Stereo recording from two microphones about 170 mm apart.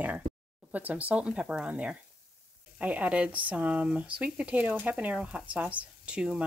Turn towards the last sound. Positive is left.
turn(degrees=-5)  # may be behind; listen again after turning